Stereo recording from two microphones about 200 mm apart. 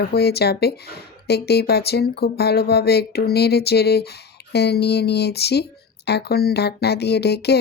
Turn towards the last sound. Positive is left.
turn(degrees=55)  # may be behind; listen again after turning